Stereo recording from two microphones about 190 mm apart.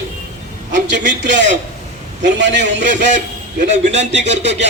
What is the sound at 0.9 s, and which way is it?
Speech, 40° right (ahead or behind).